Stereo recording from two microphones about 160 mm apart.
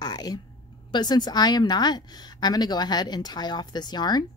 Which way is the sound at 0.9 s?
25° left (ahead or behind).